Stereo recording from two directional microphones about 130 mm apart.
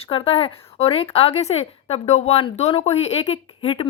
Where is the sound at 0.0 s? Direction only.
45° left (ahead or behind).